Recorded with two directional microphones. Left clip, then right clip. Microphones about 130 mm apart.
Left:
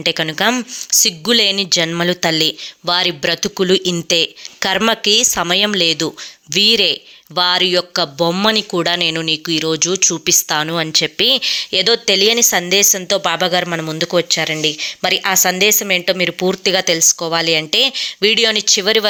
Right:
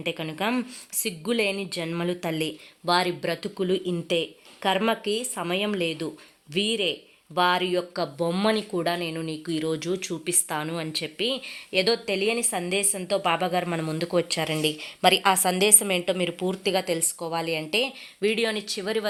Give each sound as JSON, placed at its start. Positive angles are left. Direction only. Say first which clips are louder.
{"t": 0.0, "sound": "speech", "louder": "left 13 dB", "side_deg": 40}
{"t": 2.8, "sound": "speech", "louder": "left 8 dB", "side_deg": 30}
{"t": 6.5, "sound": "speech", "louder": "left 13 dB", "side_deg": 45}
{"t": 7.3, "sound": "speech", "louder": "left 9 dB", "side_deg": 25}
{"t": 8.7, "sound": "speech", "louder": "left 11 dB", "side_deg": 40}
{"t": 16.4, "sound": "speech", "louder": "left 10 dB", "side_deg": 35}